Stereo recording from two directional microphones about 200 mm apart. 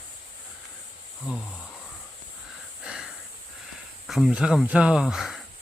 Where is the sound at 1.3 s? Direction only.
Centre (ahead or behind).